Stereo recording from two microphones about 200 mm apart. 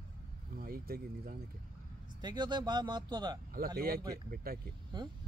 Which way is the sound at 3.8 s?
50° right (ahead or behind).